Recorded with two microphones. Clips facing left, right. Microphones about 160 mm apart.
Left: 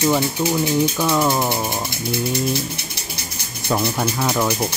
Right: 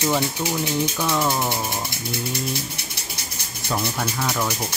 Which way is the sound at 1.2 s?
15° left (ahead or behind).